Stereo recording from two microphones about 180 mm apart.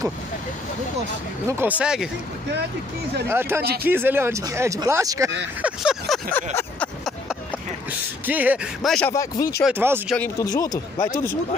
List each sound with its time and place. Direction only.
1.5 s speech: 10° right (ahead or behind)
3.3 s speech: 15° right (ahead or behind)
5.6 s speech: 5° right (ahead or behind)
6.3 s a sound: 10° left (ahead or behind)
8.3 s speech: 10° right (ahead or behind)
9.1 s speech: 20° left (ahead or behind)
9.7 s speech: 10° right (ahead or behind)
10.4 s a man's voice: 20° left (ahead or behind)